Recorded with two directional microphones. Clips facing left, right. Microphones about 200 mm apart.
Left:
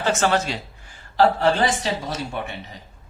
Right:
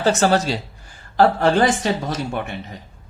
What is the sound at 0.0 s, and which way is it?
Speech, 35° right (ahead or behind).